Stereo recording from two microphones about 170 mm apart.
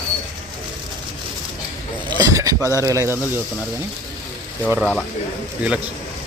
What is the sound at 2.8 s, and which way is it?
Speech, 20° right (ahead or behind).